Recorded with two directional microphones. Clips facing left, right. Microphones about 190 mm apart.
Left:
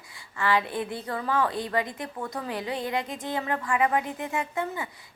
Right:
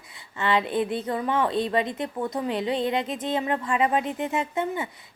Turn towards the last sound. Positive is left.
turn(degrees=-20)  # may be behind; listen again after turning